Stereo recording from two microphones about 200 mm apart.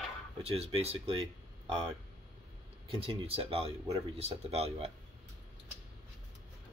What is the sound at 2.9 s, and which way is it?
Speech, 25° right (ahead or behind).